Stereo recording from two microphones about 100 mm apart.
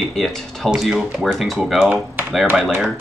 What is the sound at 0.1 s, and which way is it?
Speech, 5° left (ahead or behind).